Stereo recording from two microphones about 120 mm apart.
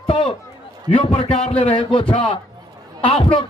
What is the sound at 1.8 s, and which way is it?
A man's voice, 45° left (ahead or behind).